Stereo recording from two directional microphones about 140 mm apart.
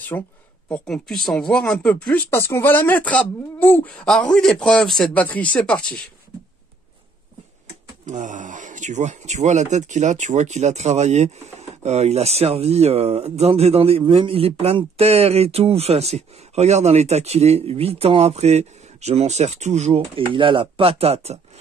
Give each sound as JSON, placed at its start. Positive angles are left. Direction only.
{"t": 0.1, "sound": "speech", "side_deg": 15}
{"t": 0.7, "sound": "speech", "side_deg": 5}
{"t": 2.1, "sound": "speech", "side_deg": 20}
{"t": 8.0, "sound": "speech", "side_deg": -65}